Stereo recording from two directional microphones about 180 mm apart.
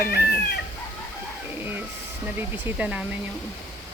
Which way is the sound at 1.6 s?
10° right (ahead or behind).